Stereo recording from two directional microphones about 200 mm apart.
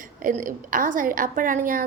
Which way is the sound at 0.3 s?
40° right (ahead or behind).